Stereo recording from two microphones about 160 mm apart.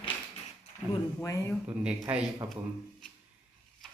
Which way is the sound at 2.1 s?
10° right (ahead or behind).